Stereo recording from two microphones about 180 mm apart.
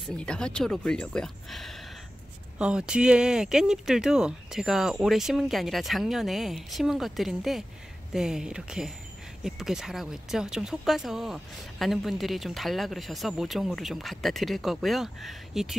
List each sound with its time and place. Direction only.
0.0 s speech: 5° left (ahead or behind)